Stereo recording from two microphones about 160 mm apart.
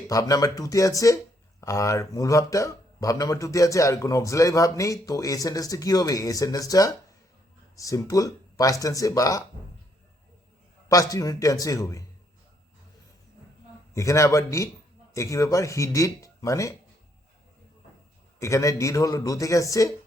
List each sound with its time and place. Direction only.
0.1 s speech: 20° left (ahead or behind)
10.8 s speech: 20° left (ahead or behind)
13.9 s speech: 20° left (ahead or behind)
18.3 s speech: 20° left (ahead or behind)